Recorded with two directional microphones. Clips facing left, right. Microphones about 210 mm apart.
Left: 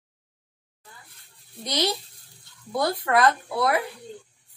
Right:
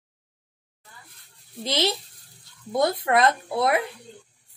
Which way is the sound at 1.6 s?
25° right (ahead or behind).